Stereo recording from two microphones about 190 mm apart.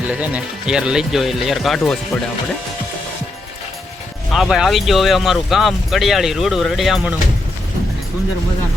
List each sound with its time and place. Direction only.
0.1 s speech: 5° right (ahead or behind)
4.3 s speech: centre (ahead or behind)